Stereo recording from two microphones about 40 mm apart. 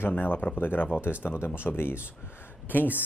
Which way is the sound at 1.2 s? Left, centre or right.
Left.